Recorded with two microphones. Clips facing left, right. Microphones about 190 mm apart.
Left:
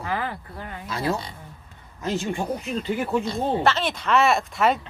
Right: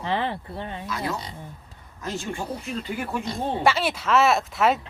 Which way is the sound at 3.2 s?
10° right (ahead or behind).